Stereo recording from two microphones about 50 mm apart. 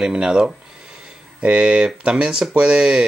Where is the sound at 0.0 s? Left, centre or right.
Centre.